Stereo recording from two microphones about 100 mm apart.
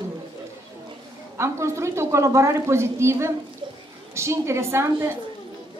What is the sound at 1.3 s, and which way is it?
A woman's voice, 30° right (ahead or behind).